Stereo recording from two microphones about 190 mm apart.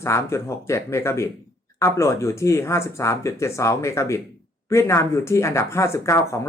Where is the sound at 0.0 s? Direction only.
15° left (ahead or behind).